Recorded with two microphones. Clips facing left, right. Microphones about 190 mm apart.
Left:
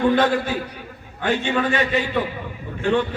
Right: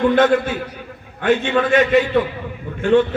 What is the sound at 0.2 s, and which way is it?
A man's voice, 35° left (ahead or behind).